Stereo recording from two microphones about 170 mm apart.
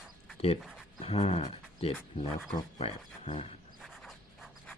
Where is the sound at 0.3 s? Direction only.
35° left (ahead or behind).